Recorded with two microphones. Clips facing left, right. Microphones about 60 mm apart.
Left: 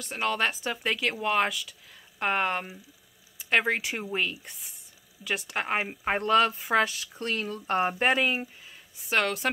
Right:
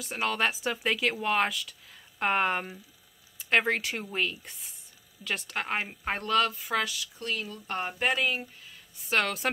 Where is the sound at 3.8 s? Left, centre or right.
Centre; by 8.5 s left.